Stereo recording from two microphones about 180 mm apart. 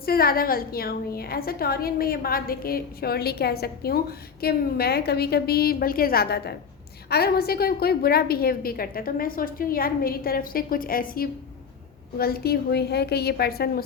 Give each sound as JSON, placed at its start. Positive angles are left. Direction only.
{"t": 0.0, "sound": "a woman's voice", "side_deg": 55}